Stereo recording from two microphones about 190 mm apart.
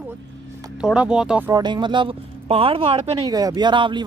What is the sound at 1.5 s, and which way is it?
Speech, 25° right (ahead or behind).